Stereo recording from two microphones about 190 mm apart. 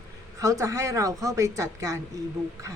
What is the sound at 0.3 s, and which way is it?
A woman's voice, 15° right (ahead or behind).